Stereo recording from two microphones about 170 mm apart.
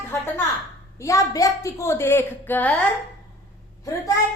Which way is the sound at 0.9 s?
20° left (ahead or behind).